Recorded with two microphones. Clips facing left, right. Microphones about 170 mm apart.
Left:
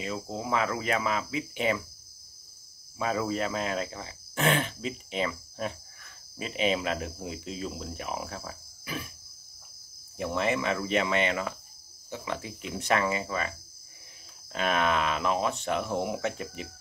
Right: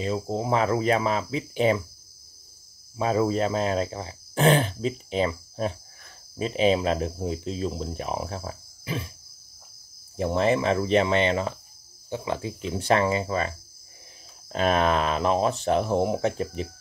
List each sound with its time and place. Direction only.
0.0 s speech: 35° right (ahead or behind)
3.0 s speech: 35° right (ahead or behind)
10.1 s speech: 35° right (ahead or behind)